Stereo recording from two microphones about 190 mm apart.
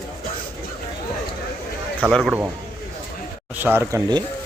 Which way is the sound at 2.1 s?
5° right (ahead or behind).